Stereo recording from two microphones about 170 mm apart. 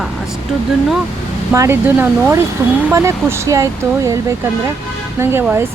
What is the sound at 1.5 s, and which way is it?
A woman's voice, 15° right (ahead or behind).